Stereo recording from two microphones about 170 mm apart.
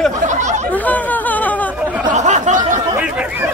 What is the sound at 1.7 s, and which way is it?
Chatter, 10° right (ahead or behind).